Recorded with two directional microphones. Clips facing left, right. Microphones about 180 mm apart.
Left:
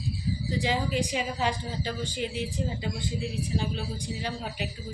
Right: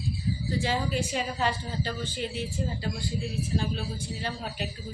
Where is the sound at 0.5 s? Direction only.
15° left (ahead or behind).